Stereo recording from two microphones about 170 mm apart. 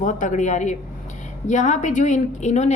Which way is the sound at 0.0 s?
45° left (ahead or behind).